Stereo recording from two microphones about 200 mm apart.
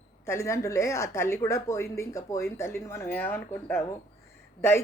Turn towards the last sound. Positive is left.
turn(degrees=10)  # may be behind; listen again after turning